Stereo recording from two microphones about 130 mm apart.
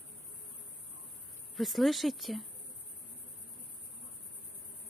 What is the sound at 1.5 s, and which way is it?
Speech, centre (ahead or behind).